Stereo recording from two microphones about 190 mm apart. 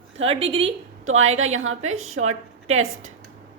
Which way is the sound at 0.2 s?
30° right (ahead or behind).